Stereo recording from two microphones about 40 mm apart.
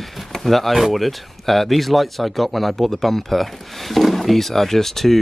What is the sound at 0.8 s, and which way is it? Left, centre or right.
Speech, centre.